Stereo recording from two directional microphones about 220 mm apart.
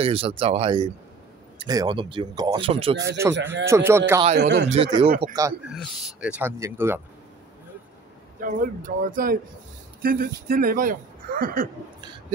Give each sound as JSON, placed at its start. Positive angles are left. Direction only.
{"t": 0.0, "sound": "speech", "side_deg": -25}
{"t": 3.2, "sound": "speech", "side_deg": -15}
{"t": 4.4, "sound": "speech", "side_deg": -50}
{"t": 4.6, "sound": "speech", "side_deg": -25}
{"t": 5.8, "sound": "speech", "side_deg": -5}
{"t": 8.5, "sound": "speech", "side_deg": -40}